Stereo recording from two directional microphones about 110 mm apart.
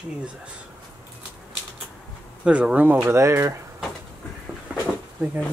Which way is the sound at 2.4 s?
10° right (ahead or behind).